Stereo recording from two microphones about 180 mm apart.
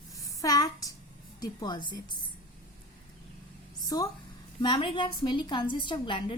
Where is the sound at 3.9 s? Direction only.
20° left (ahead or behind).